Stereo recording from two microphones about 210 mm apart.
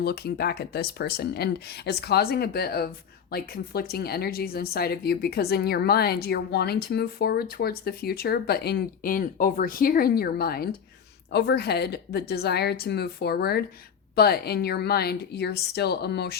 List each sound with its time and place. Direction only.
0.0 s speech: 50° left (ahead or behind)